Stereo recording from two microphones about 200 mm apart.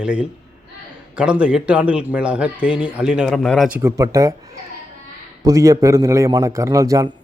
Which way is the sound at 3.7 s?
15° right (ahead or behind).